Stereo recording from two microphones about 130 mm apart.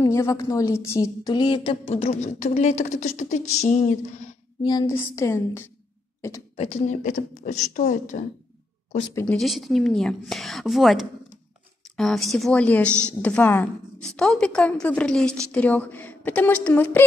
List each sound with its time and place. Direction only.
0.0 s a woman's voice: 25° left (ahead or behind)
1.3 s a woman's voice: 40° left (ahead or behind); by 4.0 s 65° left (ahead or behind)
4.6 s a woman's voice: 30° left (ahead or behind)
6.5 s a woman's voice: 55° left (ahead or behind); by 8.2 s 75° left (ahead or behind)
9.4 s a woman's voice: centre (ahead or behind); by 17.0 s 15° left (ahead or behind)